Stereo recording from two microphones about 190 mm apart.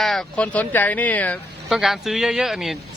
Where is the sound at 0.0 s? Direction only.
Centre (ahead or behind).